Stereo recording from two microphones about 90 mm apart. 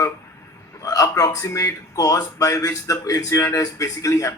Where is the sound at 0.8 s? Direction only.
40° left (ahead or behind).